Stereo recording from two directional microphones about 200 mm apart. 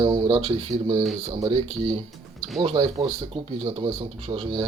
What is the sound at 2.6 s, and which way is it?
Speech, 30° right (ahead or behind).